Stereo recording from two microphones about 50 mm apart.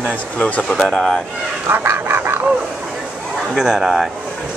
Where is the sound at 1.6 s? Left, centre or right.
Right.